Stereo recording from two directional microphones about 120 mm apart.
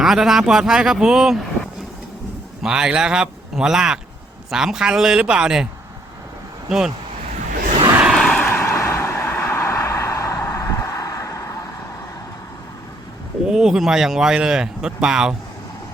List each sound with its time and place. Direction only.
0.0 s speech: 5° right (ahead or behind)
2.6 s speech: 5° right (ahead or behind)
6.7 s speech: 5° right (ahead or behind)
8.1 s vehicle: centre (ahead or behind)
8.4 s vehicle: 15° left (ahead or behind)
13.4 s speech: 5° right (ahead or behind)